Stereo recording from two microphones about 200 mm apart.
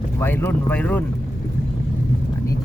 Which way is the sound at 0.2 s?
10° left (ahead or behind).